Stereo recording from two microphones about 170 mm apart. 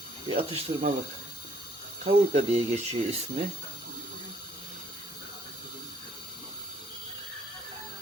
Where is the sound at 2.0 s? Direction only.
40° right (ahead or behind).